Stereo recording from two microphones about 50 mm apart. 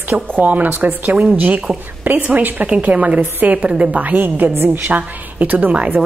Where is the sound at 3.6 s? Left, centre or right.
Right.